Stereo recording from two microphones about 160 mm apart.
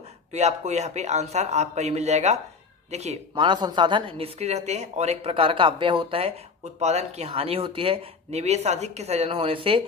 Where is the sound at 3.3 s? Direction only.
30° right (ahead or behind).